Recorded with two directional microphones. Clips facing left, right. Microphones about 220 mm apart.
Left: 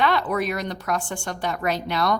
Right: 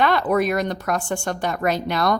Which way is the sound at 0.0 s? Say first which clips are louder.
Right 4 dB; 45° right (ahead or behind).